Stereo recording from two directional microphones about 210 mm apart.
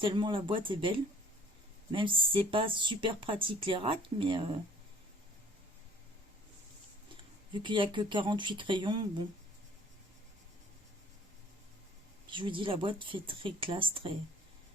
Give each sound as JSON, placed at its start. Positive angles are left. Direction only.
{"t": 0.0, "sound": "speech", "side_deg": -25}
{"t": 7.5, "sound": "speech", "side_deg": -25}
{"t": 12.3, "sound": "speech", "side_deg": -25}